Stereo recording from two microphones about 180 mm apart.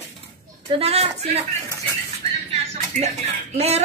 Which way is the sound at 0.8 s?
35° right (ahead or behind).